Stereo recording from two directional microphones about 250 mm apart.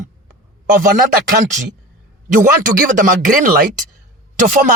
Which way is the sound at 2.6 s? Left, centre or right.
Right.